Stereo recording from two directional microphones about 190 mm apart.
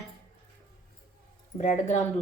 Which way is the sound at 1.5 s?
40° left (ahead or behind).